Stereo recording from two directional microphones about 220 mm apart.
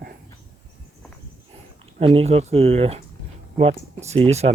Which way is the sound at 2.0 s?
25° right (ahead or behind).